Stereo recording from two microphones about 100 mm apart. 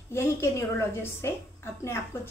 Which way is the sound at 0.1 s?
25° left (ahead or behind).